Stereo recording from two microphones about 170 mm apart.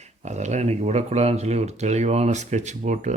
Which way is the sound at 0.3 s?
45° right (ahead or behind).